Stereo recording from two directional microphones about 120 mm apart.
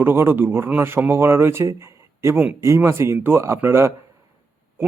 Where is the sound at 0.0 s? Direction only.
20° right (ahead or behind).